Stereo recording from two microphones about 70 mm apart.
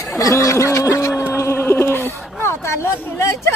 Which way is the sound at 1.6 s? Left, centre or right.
Left.